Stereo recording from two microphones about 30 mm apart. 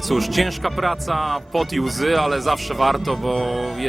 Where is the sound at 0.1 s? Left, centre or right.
Centre.